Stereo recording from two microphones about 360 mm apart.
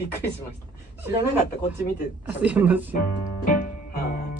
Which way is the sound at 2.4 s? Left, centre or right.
Centre.